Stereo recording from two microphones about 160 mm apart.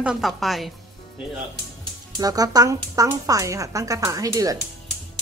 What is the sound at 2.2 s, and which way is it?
Speech, 25° right (ahead or behind).